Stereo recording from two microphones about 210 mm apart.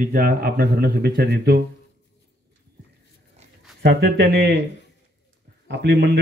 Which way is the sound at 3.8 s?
50° right (ahead or behind).